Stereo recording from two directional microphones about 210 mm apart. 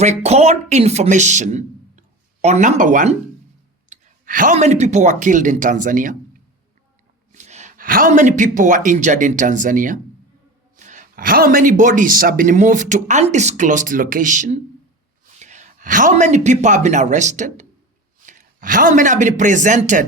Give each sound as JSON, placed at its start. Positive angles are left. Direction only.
{"t": 0.0, "sound": "speech", "side_deg": -30}
{"t": 7.3, "sound": "a man's voice", "side_deg": -35}